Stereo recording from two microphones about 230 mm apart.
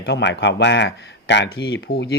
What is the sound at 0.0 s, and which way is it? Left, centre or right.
Speech, left.